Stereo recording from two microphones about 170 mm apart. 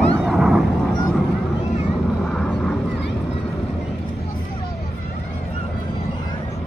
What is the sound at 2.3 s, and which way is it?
Vehicle, 5° left (ahead or behind).